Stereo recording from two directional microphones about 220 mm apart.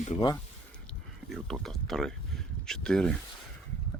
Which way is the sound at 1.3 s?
Centre (ahead or behind).